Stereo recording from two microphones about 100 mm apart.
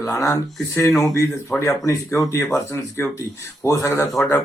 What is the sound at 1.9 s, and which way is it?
Speech, 35° left (ahead or behind).